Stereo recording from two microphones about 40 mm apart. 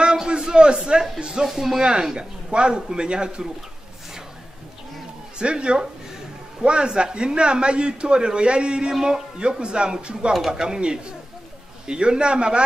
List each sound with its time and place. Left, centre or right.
0.0 s a sound: right
0.4 s a man's voice: right
2.1 s a man's voice: right
5.4 s a man's voice: right